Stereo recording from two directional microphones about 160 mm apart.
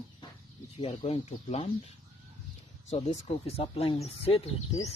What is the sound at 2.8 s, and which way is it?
Speech, 40° left (ahead or behind).